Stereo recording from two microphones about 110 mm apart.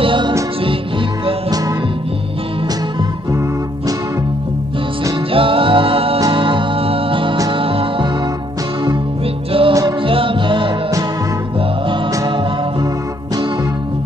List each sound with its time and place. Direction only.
0.0 s music: 50° right (ahead or behind)
5.3 s music: 55° right (ahead or behind)
9.5 s music: 55° right (ahead or behind)